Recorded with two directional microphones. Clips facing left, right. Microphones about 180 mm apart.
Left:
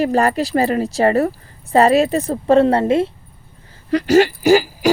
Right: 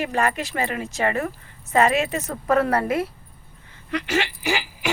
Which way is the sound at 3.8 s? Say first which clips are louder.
Left 12 dB; 35° left (ahead or behind).